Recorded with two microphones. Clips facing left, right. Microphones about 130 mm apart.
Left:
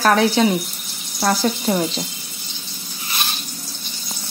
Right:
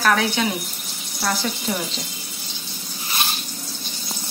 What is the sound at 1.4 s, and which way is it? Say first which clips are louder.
Speech: left 7 dB; 45° left (ahead or behind).